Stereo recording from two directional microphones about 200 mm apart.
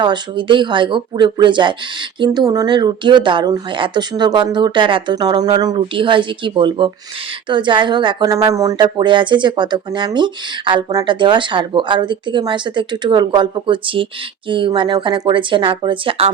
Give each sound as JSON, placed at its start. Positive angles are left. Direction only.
{"t": 0.0, "sound": "speech", "side_deg": -25}